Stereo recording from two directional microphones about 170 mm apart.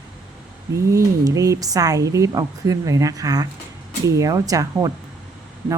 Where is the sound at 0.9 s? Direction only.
20° right (ahead or behind).